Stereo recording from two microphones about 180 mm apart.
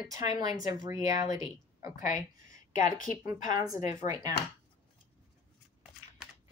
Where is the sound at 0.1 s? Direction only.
20° right (ahead or behind).